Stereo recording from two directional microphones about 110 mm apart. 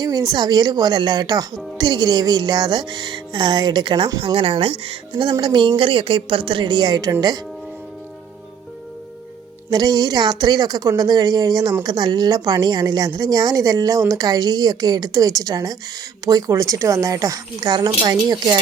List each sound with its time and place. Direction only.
0.0 s a woman's voice: 35° right (ahead or behind)
4.4 s speech: 55° right (ahead or behind); by 7.1 s 40° right (ahead or behind)
9.6 s a woman's voice: 35° right (ahead or behind)